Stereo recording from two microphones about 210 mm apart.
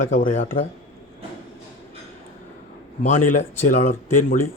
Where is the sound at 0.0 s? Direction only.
40° left (ahead or behind).